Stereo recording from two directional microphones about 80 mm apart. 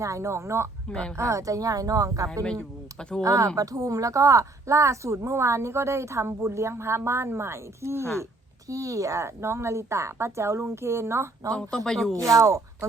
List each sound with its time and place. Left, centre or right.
0.0 s a woman's voice: right
0.9 s speech: centre
1.1 s speech: right
3.0 s speech: centre
3.2 s a woman's voice: right
8.2 s a woman's voice: right
11.5 s speech: centre
12.1 s a woman's voice: right